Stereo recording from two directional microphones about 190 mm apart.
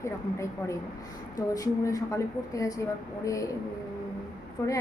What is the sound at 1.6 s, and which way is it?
A woman's voice, 15° left (ahead or behind).